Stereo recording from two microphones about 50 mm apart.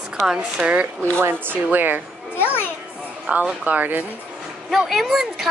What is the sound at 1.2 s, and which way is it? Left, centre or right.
Speech, right.